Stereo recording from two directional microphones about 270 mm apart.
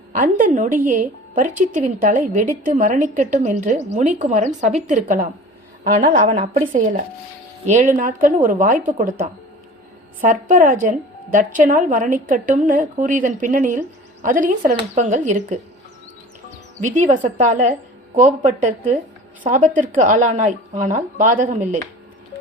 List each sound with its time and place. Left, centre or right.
0.1 s speech: right
16.8 s speech: right